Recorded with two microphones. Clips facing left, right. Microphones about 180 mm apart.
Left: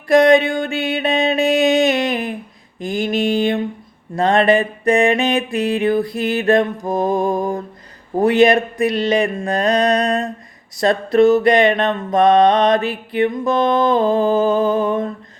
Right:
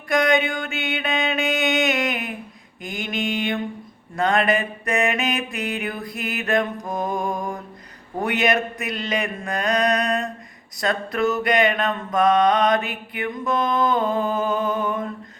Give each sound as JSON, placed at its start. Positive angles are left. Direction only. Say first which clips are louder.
{"t": 0.1, "sound": "mantra", "louder": "left 8 dB", "side_deg": 30}